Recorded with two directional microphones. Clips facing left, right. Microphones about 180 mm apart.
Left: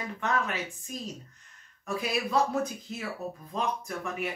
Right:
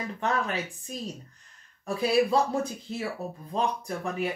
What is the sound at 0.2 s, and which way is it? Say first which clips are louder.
Speech: right 2 dB; 35° right (ahead or behind).